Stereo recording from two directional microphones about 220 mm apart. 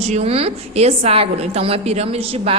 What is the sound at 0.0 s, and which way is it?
A woman's voice, 30° right (ahead or behind).